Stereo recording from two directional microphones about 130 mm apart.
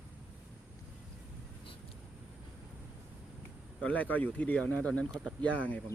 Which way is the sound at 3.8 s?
10° left (ahead or behind).